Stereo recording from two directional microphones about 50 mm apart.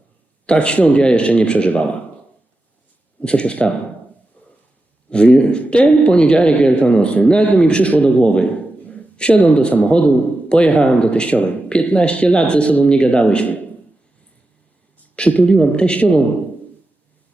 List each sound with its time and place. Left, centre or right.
0.4 s speech: left
3.2 s speech: left
4.4 s a sound: left
5.0 s speech: centre
15.1 s speech: left